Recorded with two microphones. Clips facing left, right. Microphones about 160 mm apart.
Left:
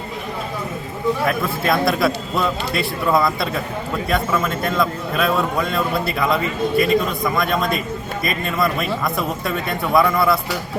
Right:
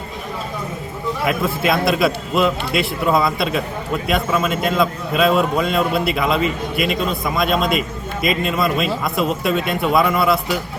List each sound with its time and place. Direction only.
1.2 s a man's voice: 20° right (ahead or behind)